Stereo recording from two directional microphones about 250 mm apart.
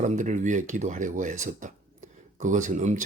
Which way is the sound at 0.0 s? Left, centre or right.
Right.